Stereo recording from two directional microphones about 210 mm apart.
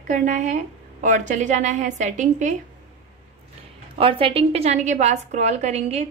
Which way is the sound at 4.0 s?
25° right (ahead or behind).